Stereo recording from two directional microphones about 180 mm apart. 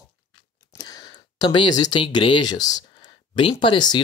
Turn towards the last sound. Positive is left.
turn(degrees=25)  # may be behind; listen again after turning